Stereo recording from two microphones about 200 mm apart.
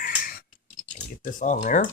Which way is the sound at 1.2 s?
40° left (ahead or behind).